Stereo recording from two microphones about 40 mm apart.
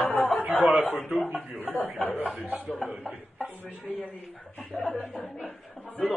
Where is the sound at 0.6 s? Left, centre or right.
Right.